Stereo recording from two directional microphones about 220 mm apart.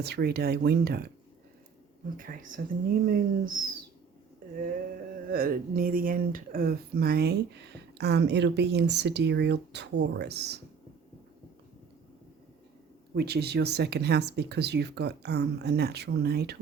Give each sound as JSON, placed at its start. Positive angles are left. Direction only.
{"t": 0.0, "sound": "speech", "side_deg": -45}
{"t": 2.1, "sound": "speech", "side_deg": -40}
{"t": 5.3, "sound": "speech", "side_deg": -40}
{"t": 13.1, "sound": "speech", "side_deg": -45}